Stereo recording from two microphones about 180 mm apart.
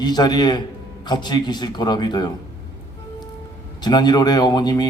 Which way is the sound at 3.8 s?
25° left (ahead or behind).